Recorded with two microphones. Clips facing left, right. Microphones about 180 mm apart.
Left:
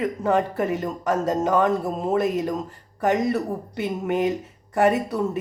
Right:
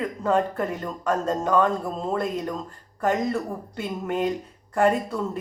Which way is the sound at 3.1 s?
75° left (ahead or behind).